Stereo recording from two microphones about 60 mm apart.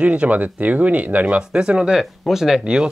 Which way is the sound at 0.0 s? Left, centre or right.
Right.